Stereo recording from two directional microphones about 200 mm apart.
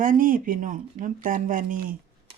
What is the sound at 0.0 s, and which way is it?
Speech, 45° right (ahead or behind).